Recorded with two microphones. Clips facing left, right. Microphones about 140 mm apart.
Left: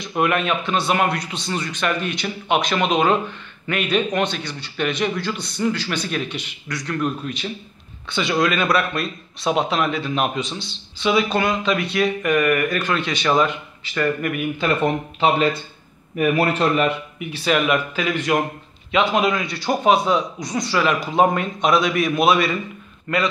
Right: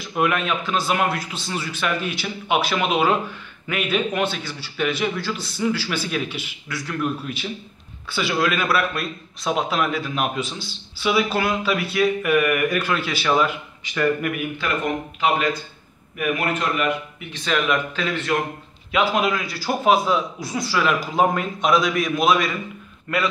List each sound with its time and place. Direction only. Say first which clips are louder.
0.0 s a man's voice: left 2 dB; centre (ahead or behind)
14.6 s a man's voice: left 6 dB; 30° left (ahead or behind)
17.2 s speech: left 7 dB; 10° left (ahead or behind)
18.9 s a man's voice: left 2 dB; 5° right (ahead or behind)